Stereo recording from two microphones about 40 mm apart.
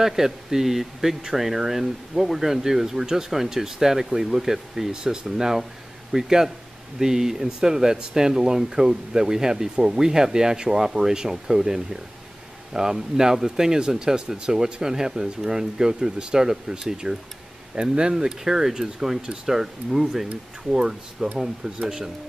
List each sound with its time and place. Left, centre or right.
0.0 s speech: centre
18.1 s speech: centre